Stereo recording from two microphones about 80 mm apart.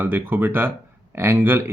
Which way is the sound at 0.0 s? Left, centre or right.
Right.